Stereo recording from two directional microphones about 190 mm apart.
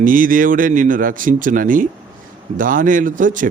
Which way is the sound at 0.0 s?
45° right (ahead or behind).